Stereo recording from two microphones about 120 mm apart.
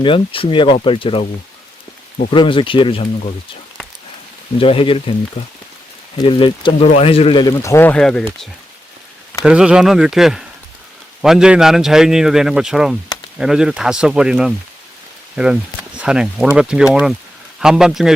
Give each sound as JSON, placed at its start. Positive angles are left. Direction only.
{"t": 0.0, "sound": "speech", "side_deg": 45}
{"t": 2.3, "sound": "speech", "side_deg": 45}
{"t": 4.6, "sound": "speech", "side_deg": 50}
{"t": 6.2, "sound": "speech", "side_deg": 45}
{"t": 6.8, "sound": "speech", "side_deg": 60}
{"t": 7.4, "sound": "speech", "side_deg": 25}
{"t": 7.9, "sound": "speech", "side_deg": 5}
{"t": 9.4, "sound": "a man's voice", "side_deg": -5}